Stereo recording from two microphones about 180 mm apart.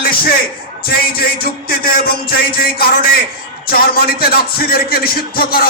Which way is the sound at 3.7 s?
55° left (ahead or behind).